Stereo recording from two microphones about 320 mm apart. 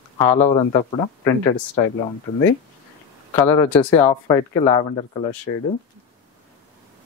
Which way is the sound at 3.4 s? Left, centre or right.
Centre.